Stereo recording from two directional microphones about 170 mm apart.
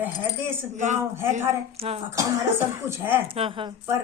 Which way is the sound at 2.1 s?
15° right (ahead or behind).